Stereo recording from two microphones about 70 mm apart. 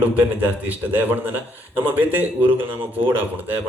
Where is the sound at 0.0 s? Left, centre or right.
Right.